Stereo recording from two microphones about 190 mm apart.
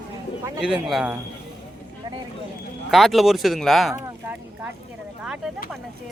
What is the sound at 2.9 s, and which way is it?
Speech, centre (ahead or behind).